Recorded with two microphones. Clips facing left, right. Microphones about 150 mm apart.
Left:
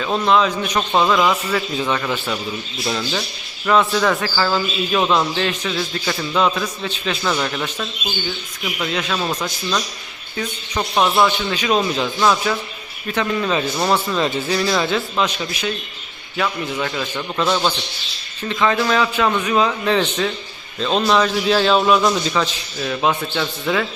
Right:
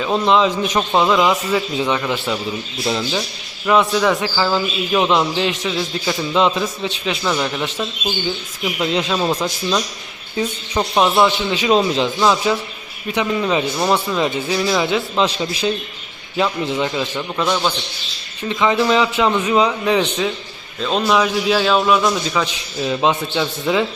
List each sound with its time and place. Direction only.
0.0 s a man's voice: 20° right (ahead or behind)
3.0 s a man's voice: 5° right (ahead or behind)
8.9 s a man's voice: 25° right (ahead or behind)
9.1 s a man's voice: 15° right (ahead or behind)
15.3 s a man's voice: 30° right (ahead or behind)
17.4 s a man's voice: 5° left (ahead or behind)
18.4 s a man's voice: 15° right (ahead or behind); by 22.4 s centre (ahead or behind)
22.8 s a man's voice: 20° right (ahead or behind)